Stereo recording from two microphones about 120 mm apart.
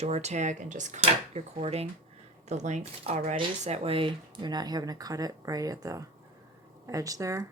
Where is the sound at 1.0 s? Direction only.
65° right (ahead or behind).